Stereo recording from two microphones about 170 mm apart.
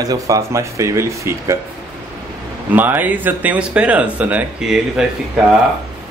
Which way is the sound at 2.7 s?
10° right (ahead or behind).